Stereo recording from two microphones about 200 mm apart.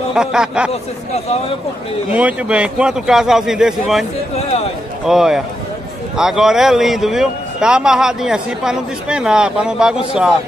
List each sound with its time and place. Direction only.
0.1 s speech: 5° right (ahead or behind)
2.1 s speech: 5° right (ahead or behind)
4.4 s a sound: 30° left (ahead or behind)
5.0 s speech: centre (ahead or behind)